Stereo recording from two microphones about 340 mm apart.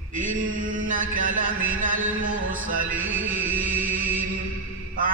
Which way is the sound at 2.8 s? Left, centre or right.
Centre.